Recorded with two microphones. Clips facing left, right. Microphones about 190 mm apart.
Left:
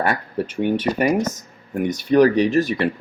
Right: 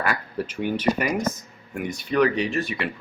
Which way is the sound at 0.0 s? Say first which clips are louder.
Left 5 dB; 30° left (ahead or behind).